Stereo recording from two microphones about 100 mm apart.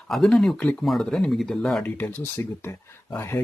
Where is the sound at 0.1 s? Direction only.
Centre (ahead or behind).